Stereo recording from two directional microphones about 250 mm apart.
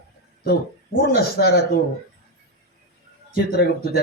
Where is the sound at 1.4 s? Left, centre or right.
Left.